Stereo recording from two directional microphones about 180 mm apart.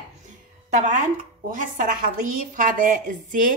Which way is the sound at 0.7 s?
40° right (ahead or behind).